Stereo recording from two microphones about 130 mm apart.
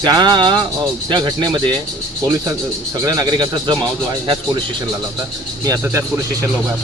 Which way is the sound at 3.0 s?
25° right (ahead or behind).